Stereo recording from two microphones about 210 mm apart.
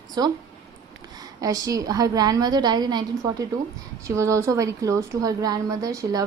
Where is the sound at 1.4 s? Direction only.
15° right (ahead or behind).